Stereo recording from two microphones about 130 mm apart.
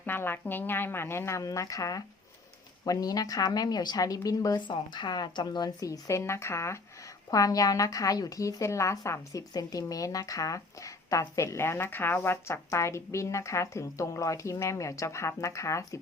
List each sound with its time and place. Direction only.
0.0 s a woman's voice: 15° left (ahead or behind)